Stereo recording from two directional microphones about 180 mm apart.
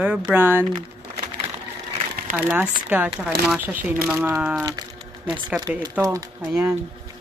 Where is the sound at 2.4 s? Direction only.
10° right (ahead or behind).